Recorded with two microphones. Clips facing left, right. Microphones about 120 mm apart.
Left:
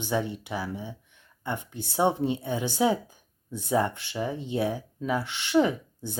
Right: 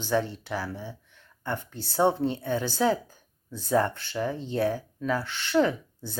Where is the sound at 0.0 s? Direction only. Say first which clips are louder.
Right 2 dB; 15° left (ahead or behind).